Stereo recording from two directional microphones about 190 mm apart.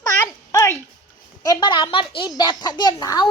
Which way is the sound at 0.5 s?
15° left (ahead or behind).